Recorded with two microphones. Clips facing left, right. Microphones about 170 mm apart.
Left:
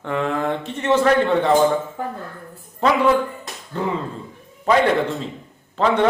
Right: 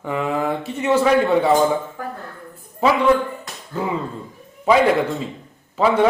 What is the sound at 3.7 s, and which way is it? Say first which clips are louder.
Mantra: even; 5° right (ahead or behind).